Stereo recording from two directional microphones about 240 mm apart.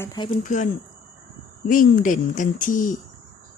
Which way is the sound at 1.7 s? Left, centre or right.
Left.